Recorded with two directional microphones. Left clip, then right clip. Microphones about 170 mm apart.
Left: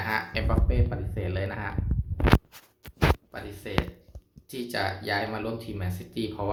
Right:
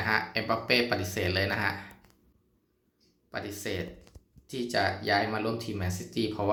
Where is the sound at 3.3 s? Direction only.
20° right (ahead or behind).